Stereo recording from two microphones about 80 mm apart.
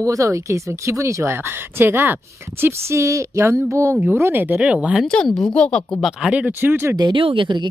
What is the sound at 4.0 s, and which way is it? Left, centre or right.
Speech, right.